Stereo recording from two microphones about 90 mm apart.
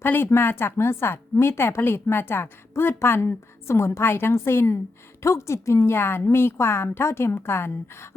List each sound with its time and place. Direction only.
0.0 s speech: 25° left (ahead or behind)